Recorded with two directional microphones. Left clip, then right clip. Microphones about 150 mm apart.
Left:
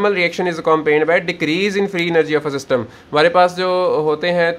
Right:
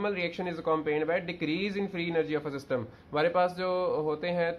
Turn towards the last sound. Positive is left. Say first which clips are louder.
# left 14 dB
turn(degrees=20)  # may be behind; listen again after turning